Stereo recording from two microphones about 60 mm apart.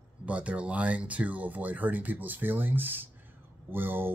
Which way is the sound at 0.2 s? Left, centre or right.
Right.